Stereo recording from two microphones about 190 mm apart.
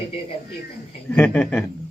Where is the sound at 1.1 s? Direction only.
5° left (ahead or behind).